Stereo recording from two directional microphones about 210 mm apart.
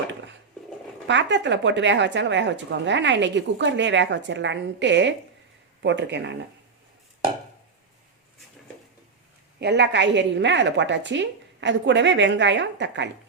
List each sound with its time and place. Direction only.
1.0 s a woman's voice: 60° right (ahead or behind)
9.6 s a woman's voice: 55° right (ahead or behind)